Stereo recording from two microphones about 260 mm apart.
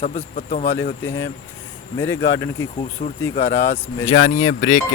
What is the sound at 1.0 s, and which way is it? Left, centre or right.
Speech, centre.